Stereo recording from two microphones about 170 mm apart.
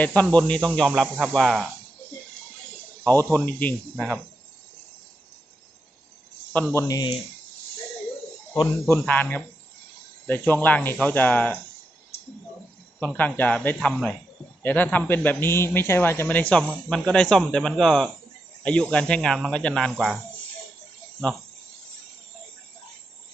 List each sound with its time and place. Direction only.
0.0 s speech: 5° left (ahead or behind)
3.2 s a man's voice: 10° left (ahead or behind)
6.5 s speech: 10° left (ahead or behind)
6.8 s speech: 20° left (ahead or behind)
8.9 s a man's voice: 10° left (ahead or behind)
13.0 s a man's voice: 10° left (ahead or behind)